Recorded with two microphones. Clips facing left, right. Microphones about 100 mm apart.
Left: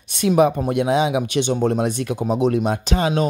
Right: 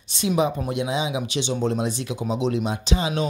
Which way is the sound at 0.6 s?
55° left (ahead or behind).